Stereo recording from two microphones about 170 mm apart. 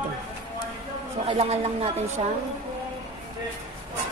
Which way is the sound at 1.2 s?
35° right (ahead or behind).